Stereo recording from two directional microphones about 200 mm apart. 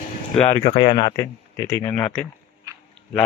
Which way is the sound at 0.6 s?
30° left (ahead or behind).